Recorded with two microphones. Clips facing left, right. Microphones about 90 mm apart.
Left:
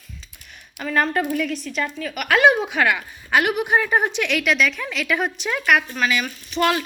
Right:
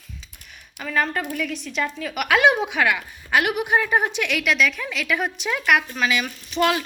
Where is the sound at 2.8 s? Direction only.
Centre (ahead or behind).